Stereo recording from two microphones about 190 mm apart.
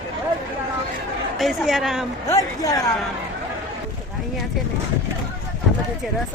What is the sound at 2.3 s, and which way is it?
Speech, 20° left (ahead or behind).